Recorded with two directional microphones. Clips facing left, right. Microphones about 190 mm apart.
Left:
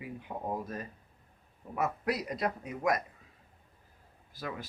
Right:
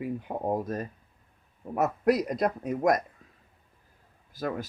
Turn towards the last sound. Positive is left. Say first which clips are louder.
# right 8 dB
turn(degrees=-45)  # may be behind; listen again after turning